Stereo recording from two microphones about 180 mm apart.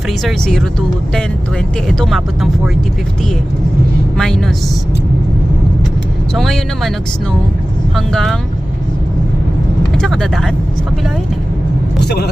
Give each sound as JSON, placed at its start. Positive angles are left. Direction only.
{"t": 0.2, "sound": "speech", "side_deg": 0}
{"t": 4.2, "sound": "speech", "side_deg": 5}
{"t": 6.3, "sound": "speech", "side_deg": 0}
{"t": 7.9, "sound": "speech", "side_deg": 0}
{"t": 9.9, "sound": "speech", "side_deg": 5}
{"t": 11.9, "sound": "speech", "side_deg": 65}